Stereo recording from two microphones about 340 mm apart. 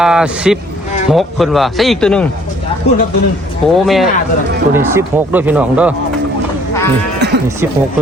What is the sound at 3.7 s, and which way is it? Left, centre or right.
Speech, centre.